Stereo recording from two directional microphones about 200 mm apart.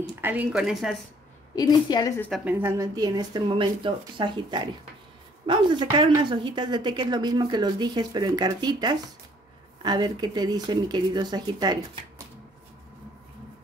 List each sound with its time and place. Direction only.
0.1 s speech: 10° right (ahead or behind)
1.5 s a woman's voice: 20° left (ahead or behind)
2.2 s speech: 10° right (ahead or behind)